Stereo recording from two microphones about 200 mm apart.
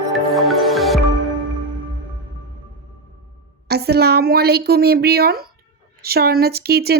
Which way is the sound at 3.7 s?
55° right (ahead or behind).